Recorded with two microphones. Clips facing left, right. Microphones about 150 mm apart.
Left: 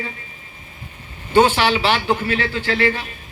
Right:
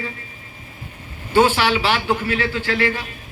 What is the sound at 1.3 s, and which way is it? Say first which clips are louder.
Speech: left 1 dB; 10° right (ahead or behind).